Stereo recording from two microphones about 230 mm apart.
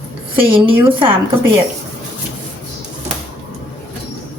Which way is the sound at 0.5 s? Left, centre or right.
Right.